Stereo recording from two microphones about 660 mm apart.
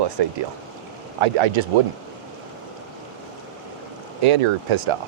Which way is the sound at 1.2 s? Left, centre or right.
Right.